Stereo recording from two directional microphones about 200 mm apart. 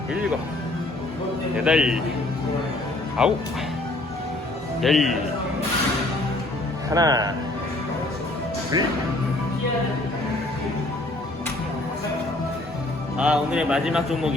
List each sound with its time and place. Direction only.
0.1 s a man's voice: 5° right (ahead or behind)
1.6 s a man's voice: 5° right (ahead or behind)
3.2 s a man's voice: 5° right (ahead or behind)
4.8 s a man's voice: centre (ahead or behind)
6.9 s speech: 20° right (ahead or behind)
8.7 s speech: 20° right (ahead or behind)
13.1 s a man's voice: 5° right (ahead or behind)